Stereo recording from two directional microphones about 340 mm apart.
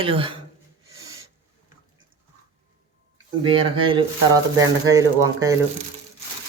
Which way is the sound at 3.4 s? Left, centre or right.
Centre.